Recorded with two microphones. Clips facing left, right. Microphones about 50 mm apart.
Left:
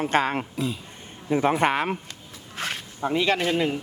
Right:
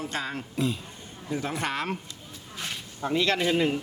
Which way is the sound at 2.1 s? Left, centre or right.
Left.